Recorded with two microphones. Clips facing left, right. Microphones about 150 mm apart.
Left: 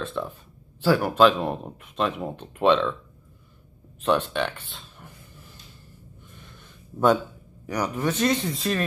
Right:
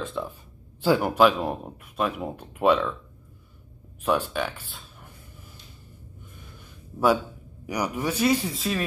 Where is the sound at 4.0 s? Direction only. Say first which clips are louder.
Left 2 dB; 10° right (ahead or behind).